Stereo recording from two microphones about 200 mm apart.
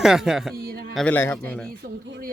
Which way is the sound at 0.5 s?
50° right (ahead or behind).